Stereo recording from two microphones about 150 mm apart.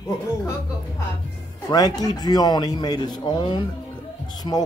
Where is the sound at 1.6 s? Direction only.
25° left (ahead or behind).